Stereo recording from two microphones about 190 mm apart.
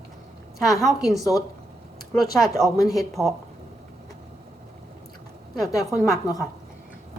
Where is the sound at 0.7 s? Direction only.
Centre (ahead or behind).